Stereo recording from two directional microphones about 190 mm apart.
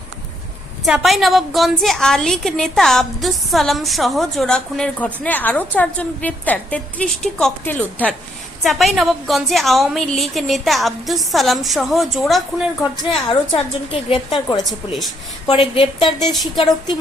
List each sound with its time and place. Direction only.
0.9 s a woman's voice: centre (ahead or behind)
13.5 s a woman's voice: 30° left (ahead or behind)
15.4 s a woman's voice: 30° left (ahead or behind)
16.2 s a woman's voice: centre (ahead or behind)